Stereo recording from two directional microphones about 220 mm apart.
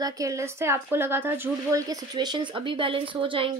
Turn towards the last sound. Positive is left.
turn(degrees=-25)  # may be behind; listen again after turning